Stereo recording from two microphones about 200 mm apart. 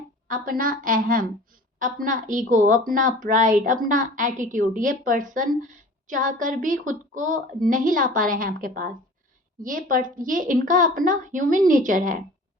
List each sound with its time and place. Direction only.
0.3 s a woman's voice: 45° right (ahead or behind)